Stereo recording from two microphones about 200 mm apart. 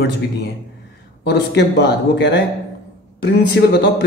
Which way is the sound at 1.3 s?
60° left (ahead or behind).